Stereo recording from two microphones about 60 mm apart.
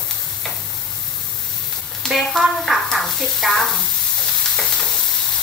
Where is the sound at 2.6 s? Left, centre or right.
Centre.